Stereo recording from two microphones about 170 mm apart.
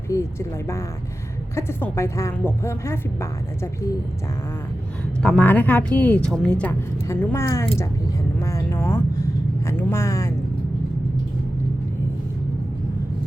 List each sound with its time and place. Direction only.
0.1 s speech: 15° left (ahead or behind)
5.2 s speech: 10° left (ahead or behind)